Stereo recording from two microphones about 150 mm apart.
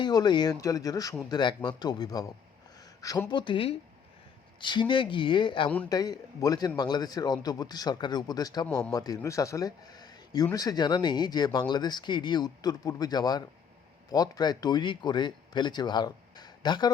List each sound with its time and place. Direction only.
0.0 s a man's voice: 30° left (ahead or behind)